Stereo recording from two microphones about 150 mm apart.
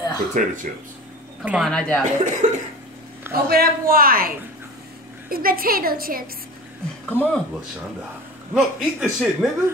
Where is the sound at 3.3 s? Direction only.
90° right.